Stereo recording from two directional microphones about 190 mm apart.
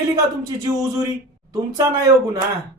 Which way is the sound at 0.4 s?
20° right (ahead or behind).